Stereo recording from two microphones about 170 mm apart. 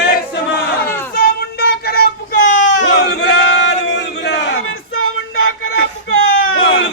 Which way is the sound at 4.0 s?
85° left.